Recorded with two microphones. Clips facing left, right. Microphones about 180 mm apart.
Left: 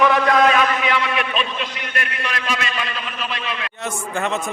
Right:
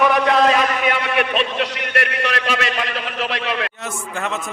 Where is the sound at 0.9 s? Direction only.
55° right (ahead or behind).